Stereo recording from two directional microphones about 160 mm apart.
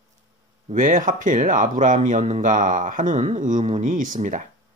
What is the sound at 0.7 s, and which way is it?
Speech, 55° right (ahead or behind).